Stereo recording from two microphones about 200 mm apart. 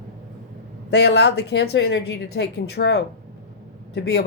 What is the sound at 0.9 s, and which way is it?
Speech, 60° left (ahead or behind).